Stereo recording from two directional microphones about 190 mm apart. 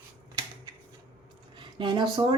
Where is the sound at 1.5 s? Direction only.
25° right (ahead or behind).